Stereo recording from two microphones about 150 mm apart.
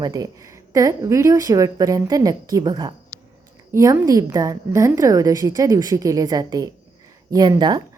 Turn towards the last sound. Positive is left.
turn(degrees=-30)  # may be behind; listen again after turning